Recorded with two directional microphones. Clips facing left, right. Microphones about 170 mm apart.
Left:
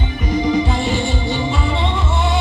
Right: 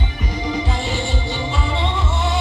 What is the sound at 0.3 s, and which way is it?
Music, 50° left (ahead or behind).